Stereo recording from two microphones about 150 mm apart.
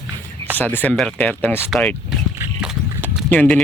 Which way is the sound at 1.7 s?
Centre (ahead or behind).